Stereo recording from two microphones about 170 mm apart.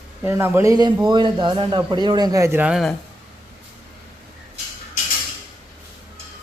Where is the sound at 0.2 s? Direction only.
15° right (ahead or behind).